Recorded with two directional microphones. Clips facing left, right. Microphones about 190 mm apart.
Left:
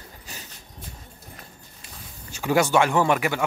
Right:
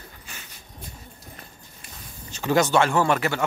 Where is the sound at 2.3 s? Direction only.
10° left (ahead or behind).